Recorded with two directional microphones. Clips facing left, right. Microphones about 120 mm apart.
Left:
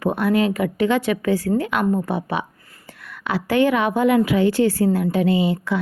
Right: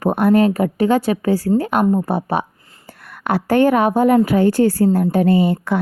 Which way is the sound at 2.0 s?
40° right (ahead or behind).